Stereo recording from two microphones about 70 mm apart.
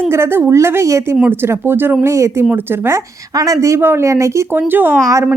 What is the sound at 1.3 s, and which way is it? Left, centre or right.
Speech, right.